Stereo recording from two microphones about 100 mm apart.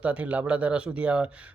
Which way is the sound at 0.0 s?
15° right (ahead or behind).